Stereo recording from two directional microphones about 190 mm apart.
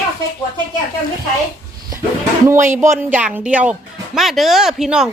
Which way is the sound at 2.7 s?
15° right (ahead or behind).